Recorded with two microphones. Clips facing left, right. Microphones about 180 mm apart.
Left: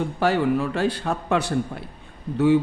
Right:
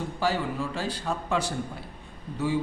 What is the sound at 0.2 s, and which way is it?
A man's voice, 60° left (ahead or behind).